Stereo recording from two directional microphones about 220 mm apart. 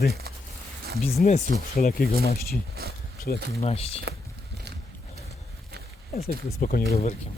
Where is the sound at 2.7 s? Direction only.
45° right (ahead or behind).